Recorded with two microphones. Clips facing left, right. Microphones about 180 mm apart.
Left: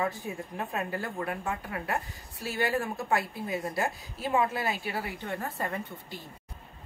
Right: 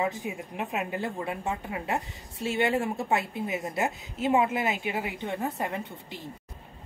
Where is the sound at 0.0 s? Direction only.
15° right (ahead or behind).